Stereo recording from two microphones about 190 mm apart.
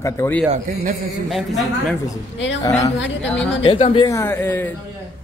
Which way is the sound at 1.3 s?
Centre (ahead or behind).